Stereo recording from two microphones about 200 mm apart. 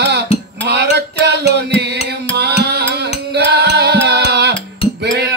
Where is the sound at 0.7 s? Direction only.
55° right (ahead or behind).